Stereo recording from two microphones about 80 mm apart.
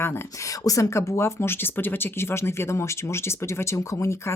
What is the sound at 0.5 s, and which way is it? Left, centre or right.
Speech, left.